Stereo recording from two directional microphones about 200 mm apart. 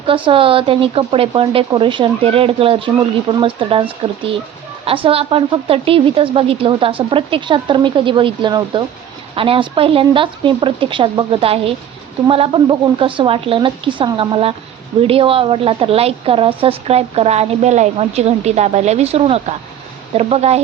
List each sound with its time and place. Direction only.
0.0 s a woman's voice: 25° right (ahead or behind)